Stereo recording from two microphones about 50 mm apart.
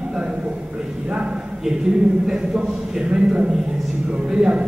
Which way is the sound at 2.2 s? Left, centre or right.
Centre.